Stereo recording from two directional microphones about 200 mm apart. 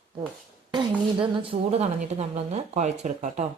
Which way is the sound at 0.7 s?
25° right (ahead or behind).